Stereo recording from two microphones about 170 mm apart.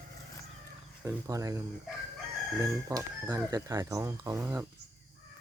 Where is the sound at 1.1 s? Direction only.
20° right (ahead or behind).